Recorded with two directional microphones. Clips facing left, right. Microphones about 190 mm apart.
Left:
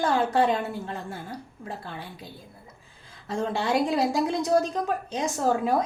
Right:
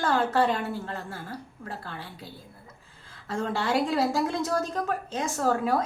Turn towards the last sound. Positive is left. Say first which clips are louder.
# left 1 dB
turn(degrees=20)  # may be behind; listen again after turning